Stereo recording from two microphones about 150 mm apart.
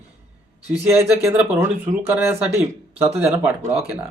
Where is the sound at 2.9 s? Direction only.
40° right (ahead or behind).